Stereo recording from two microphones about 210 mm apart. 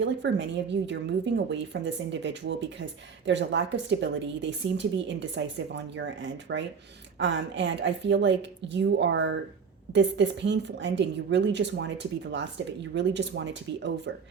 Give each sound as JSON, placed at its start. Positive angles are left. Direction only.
{"t": 0.0, "sound": "a woman's voice", "side_deg": -55}